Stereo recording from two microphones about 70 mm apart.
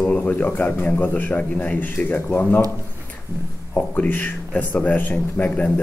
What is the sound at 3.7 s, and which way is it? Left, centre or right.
Speech, left.